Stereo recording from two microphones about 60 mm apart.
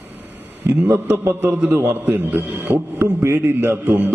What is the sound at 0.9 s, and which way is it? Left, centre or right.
Speech, right.